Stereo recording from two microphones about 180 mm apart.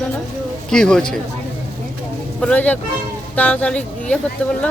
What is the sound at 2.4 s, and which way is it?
Speech, 5° left (ahead or behind).